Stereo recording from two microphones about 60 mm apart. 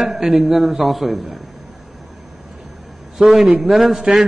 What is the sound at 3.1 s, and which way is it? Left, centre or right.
A man's voice, centre.